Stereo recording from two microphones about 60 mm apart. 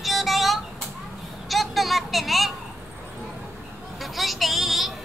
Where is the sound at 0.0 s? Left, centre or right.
Centre.